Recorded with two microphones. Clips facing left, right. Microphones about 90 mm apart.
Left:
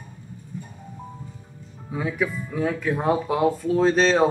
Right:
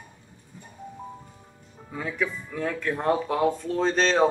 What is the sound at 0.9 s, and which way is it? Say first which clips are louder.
Music: left 1 dB; 10° right (ahead or behind).